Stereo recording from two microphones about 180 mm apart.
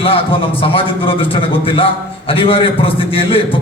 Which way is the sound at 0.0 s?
30° left (ahead or behind).